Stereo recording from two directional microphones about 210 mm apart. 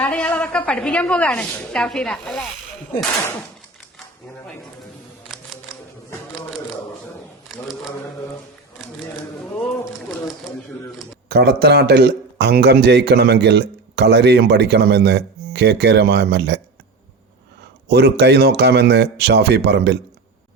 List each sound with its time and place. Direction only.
0.0 s a woman's voice: 5° left (ahead or behind)
11.3 s speech: 50° right (ahead or behind)
17.8 s speech: 50° right (ahead or behind)